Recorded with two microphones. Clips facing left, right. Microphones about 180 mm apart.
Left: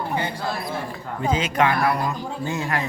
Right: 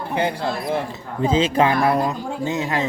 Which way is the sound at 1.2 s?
30° right (ahead or behind).